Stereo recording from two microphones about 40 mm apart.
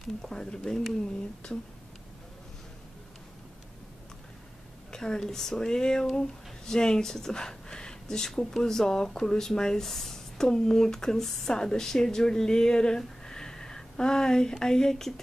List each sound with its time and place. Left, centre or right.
0.2 s speech: centre
4.9 s speech: centre